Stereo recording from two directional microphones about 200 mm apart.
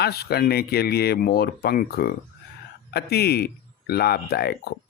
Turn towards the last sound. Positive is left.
turn(degrees=55)  # may be behind; listen again after turning